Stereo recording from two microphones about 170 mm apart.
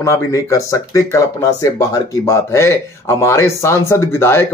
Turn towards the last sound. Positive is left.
turn(degrees=15)  # may be behind; listen again after turning